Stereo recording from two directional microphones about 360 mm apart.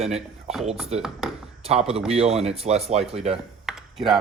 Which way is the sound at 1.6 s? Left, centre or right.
Centre.